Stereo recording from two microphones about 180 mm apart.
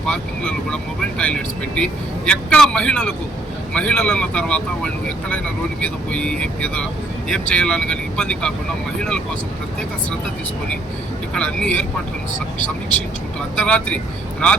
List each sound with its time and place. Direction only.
0.0 s speech: 5° left (ahead or behind)
11.3 s speech: 5° left (ahead or behind)
13.6 s speech: 5° left (ahead or behind)